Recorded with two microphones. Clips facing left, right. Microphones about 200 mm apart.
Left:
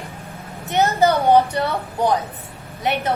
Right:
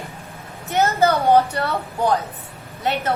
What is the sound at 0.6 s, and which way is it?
A woman's voice, 15° left (ahead or behind).